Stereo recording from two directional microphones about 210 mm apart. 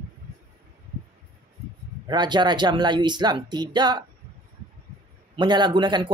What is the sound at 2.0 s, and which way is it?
Speech, 20° right (ahead or behind).